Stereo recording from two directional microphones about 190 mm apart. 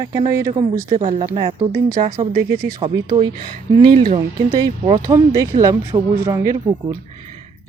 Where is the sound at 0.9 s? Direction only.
30° right (ahead or behind).